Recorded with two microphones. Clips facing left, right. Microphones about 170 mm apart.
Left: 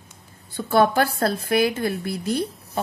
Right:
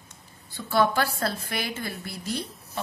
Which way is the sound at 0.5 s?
55° left (ahead or behind).